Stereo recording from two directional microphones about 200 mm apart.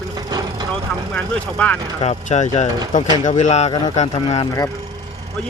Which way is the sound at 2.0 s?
35° left (ahead or behind).